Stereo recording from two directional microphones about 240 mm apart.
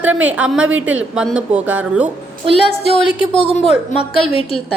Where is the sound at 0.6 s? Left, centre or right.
Right.